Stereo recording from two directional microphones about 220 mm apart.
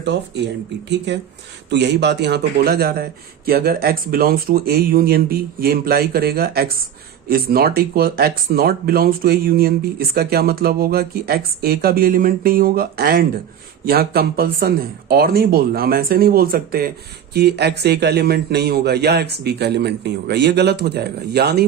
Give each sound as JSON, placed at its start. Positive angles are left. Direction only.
{"t": 0.0, "sound": "speech", "side_deg": -50}